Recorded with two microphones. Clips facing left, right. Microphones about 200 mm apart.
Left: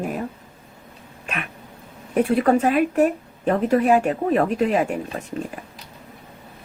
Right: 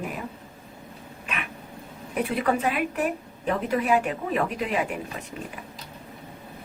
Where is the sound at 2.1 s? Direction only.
45° left (ahead or behind).